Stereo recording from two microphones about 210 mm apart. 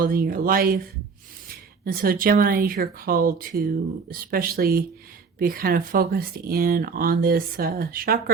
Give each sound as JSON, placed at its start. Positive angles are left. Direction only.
{"t": 0.0, "sound": "speech", "side_deg": -45}